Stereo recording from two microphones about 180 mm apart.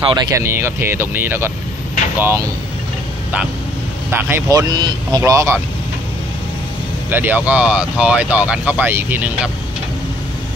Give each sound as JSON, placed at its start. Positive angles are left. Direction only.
{"t": 0.1, "sound": "speech", "side_deg": -20}
{"t": 4.1, "sound": "speech", "side_deg": -15}
{"t": 7.1, "sound": "speech", "side_deg": -10}